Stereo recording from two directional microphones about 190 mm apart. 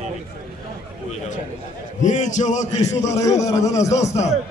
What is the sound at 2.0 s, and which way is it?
Speech, 40° left (ahead or behind).